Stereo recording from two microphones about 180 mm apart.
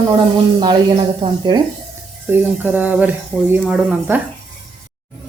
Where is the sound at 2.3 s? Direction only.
10° right (ahead or behind).